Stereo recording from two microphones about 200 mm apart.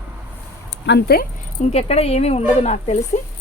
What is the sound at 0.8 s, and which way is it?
Speech, 55° left (ahead or behind).